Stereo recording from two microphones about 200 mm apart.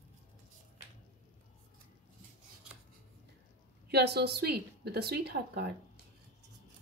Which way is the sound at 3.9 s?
55° right (ahead or behind).